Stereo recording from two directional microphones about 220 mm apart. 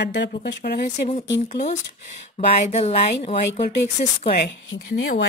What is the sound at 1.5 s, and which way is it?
Speech, 30° left (ahead or behind).